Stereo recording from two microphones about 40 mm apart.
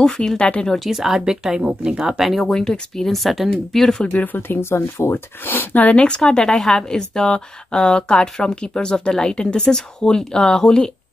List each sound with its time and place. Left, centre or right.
0.0 s a woman's voice: centre
0.7 s speech: centre
2.5 s speech: centre
3.2 s a woman's voice: centre
4.1 s speech: left
4.4 s speech: left
5.9 s a woman's voice: left